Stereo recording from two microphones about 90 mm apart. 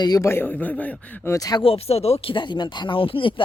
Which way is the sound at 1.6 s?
90° left.